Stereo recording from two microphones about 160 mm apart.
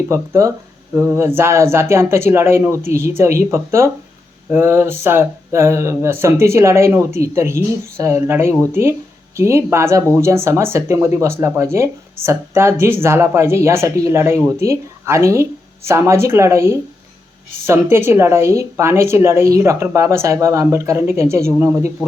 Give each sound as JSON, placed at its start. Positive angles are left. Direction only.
{"t": 0.1, "sound": "a woman's voice", "side_deg": -20}